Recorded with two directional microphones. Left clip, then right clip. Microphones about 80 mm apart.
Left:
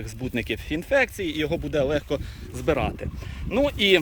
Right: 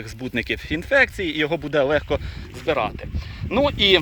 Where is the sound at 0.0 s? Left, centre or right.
Left.